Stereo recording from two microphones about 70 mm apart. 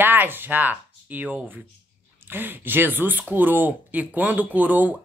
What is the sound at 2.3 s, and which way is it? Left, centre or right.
Speech, right.